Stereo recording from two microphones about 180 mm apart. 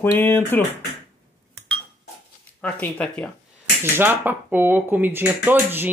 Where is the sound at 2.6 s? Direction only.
5° left (ahead or behind).